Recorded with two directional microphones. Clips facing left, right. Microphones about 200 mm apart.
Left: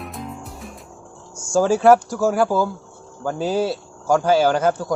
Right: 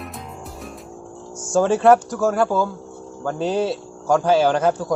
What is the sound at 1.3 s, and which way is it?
Speech, 20° right (ahead or behind).